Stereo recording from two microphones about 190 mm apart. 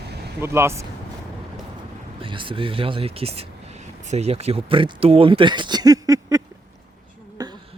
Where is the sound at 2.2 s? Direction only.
25° right (ahead or behind).